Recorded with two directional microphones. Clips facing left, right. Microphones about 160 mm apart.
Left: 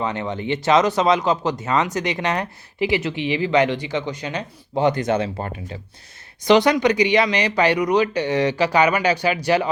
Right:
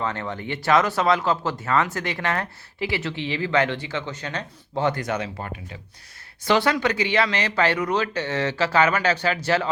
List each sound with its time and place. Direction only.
0.0 s speech: 15° left (ahead or behind); by 5.7 s 35° left (ahead or behind)
6.4 s speech: 15° left (ahead or behind)